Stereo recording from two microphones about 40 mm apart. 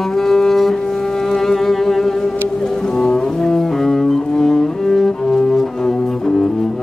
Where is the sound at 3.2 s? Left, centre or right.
Centre.